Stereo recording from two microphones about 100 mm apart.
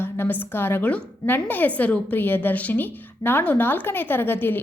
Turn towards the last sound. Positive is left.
turn(degrees=20)  # may be behind; listen again after turning